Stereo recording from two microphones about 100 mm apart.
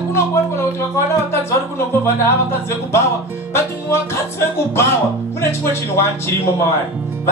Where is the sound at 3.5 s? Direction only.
25° left (ahead or behind).